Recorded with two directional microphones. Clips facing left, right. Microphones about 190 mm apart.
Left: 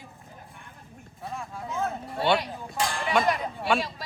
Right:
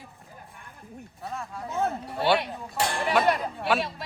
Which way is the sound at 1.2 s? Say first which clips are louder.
Even; centre (ahead or behind).